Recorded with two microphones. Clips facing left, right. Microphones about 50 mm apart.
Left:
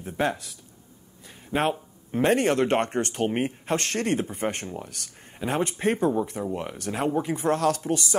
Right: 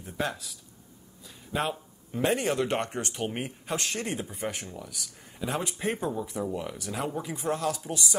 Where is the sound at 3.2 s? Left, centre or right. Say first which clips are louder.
Left 8 dB; left.